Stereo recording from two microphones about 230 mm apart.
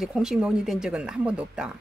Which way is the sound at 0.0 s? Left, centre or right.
Centre.